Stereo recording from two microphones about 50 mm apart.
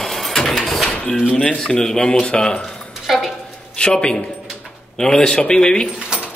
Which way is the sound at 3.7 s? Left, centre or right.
Centre.